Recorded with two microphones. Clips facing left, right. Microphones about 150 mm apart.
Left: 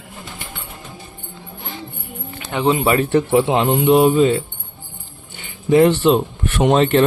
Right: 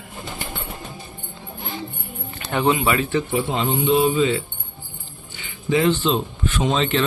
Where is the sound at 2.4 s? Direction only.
15° left (ahead or behind).